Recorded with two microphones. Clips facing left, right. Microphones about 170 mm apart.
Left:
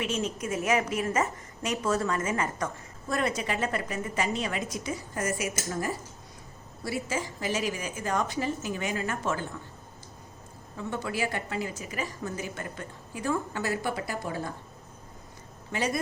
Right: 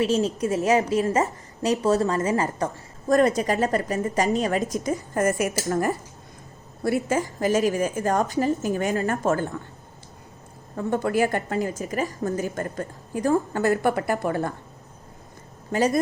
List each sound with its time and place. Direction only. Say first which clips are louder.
0.0 s a woman's voice: right 8 dB; 40° right (ahead or behind)
10.8 s a woman's voice: right 9 dB; 45° right (ahead or behind)
15.7 s a woman's voice: right 8 dB; 40° right (ahead or behind)